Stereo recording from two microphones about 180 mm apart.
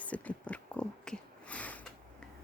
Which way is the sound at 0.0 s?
5° left (ahead or behind).